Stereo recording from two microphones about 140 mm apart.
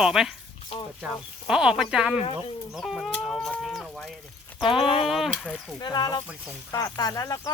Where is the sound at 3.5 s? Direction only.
Centre (ahead or behind).